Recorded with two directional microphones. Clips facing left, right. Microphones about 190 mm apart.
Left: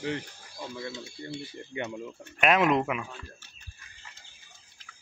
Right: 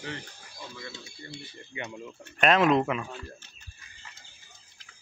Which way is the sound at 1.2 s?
70° left (ahead or behind).